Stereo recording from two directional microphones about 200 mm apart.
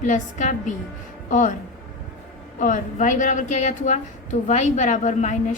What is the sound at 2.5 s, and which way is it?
A woman's voice, 40° left (ahead or behind).